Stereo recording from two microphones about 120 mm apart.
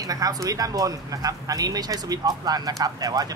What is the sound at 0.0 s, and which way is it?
Speech, 30° right (ahead or behind).